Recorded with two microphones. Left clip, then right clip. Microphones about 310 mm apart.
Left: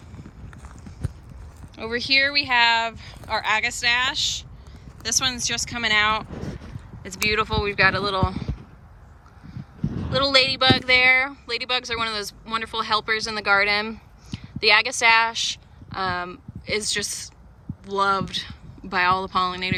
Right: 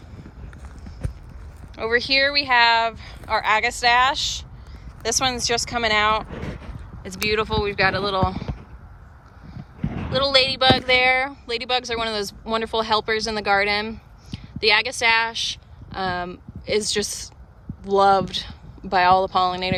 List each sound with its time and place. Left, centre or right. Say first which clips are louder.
1.7 s speech: right 2 dB; centre
9.5 s livestock: even; centre
10.1 s speech: even; centre